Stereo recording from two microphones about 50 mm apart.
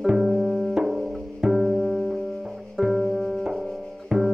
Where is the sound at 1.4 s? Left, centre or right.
Centre.